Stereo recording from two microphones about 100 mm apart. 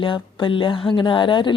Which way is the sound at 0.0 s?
55° left (ahead or behind).